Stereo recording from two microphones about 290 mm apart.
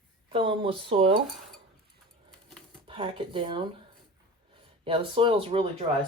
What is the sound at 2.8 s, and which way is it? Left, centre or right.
Speech, centre.